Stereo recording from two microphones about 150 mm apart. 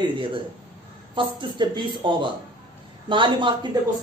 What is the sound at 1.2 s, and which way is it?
Speech, 30° right (ahead or behind).